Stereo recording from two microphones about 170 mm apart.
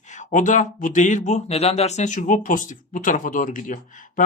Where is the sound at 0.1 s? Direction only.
45° left (ahead or behind).